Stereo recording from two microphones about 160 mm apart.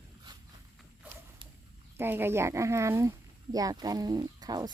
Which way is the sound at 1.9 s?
15° right (ahead or behind).